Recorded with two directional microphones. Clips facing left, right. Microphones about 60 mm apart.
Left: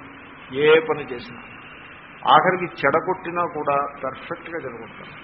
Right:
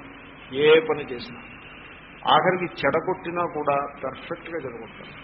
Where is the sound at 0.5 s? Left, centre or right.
Centre.